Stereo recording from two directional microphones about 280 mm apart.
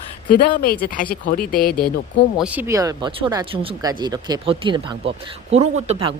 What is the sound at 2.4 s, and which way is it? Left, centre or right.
Speech, centre.